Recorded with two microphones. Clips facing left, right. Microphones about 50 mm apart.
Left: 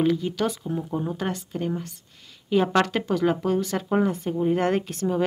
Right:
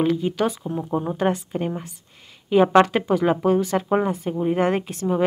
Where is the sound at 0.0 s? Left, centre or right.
Centre.